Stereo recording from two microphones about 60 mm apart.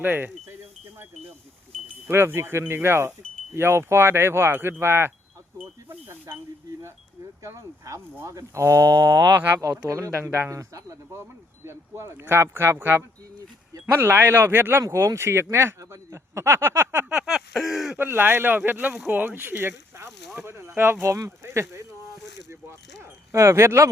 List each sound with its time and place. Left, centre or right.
0.0 s speech: right
2.0 s speech: right
7.4 s speech: right
9.6 s speech: right
11.1 s a sound: right
12.4 s speech: right
15.9 s a sound: right
17.2 s a sound: centre
17.9 s speech: right
23.3 s speech: right